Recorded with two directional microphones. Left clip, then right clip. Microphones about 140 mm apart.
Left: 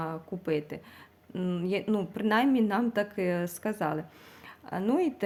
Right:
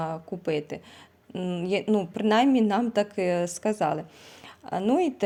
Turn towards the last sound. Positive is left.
turn(degrees=-45)  # may be behind; listen again after turning